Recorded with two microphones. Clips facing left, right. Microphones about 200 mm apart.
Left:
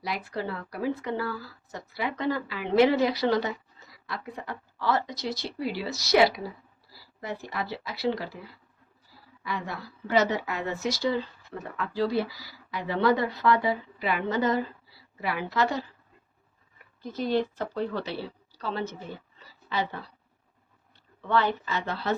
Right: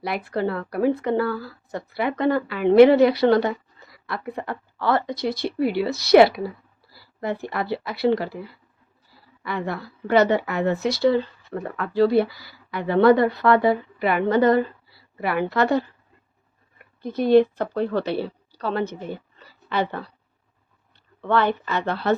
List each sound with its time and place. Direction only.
0.0 s speech: 60° right (ahead or behind)
19.4 s a sound: 60° right (ahead or behind)
21.2 s speech: 60° right (ahead or behind)